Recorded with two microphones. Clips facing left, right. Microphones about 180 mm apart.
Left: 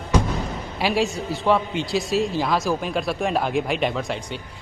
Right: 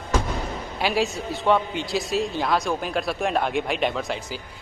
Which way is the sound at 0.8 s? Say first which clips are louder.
Left 2 dB; centre (ahead or behind).